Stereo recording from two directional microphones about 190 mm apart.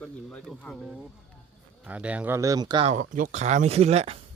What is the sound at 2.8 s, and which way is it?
Speech, 40° right (ahead or behind).